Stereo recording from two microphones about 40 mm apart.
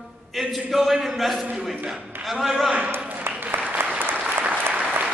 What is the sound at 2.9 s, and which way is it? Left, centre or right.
Applause, right.